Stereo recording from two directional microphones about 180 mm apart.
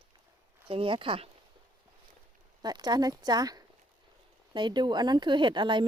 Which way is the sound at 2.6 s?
20° right (ahead or behind).